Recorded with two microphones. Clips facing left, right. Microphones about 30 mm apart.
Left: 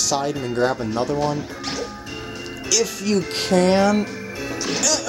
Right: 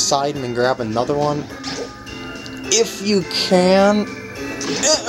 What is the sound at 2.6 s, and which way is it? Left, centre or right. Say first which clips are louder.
Speech: right 4 dB; right.